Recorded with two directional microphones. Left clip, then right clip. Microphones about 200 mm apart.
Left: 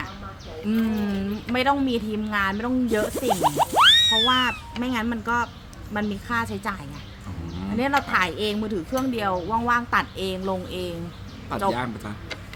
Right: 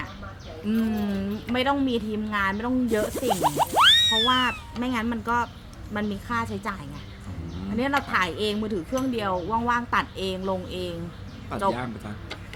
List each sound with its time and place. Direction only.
0.7 s speech: 10° left (ahead or behind)
7.8 s speech: 10° left (ahead or behind)
11.7 s speech: 30° left (ahead or behind)